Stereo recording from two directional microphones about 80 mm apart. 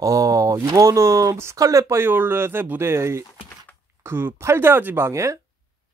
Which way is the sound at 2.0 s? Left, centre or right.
Right.